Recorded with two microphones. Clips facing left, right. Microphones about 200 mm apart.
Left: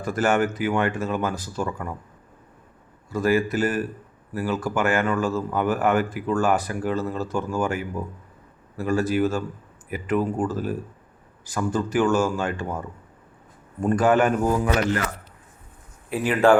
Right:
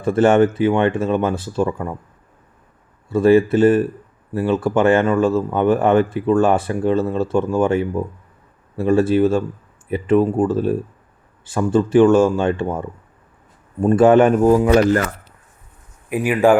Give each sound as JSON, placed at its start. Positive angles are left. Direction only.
{"t": 0.0, "sound": "speech", "side_deg": -25}
{"t": 3.1, "sound": "speech", "side_deg": -25}
{"t": 13.8, "sound": "speech", "side_deg": -25}
{"t": 16.0, "sound": "speech", "side_deg": -15}